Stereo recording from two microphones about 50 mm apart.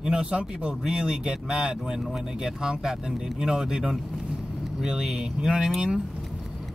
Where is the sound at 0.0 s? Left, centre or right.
Centre.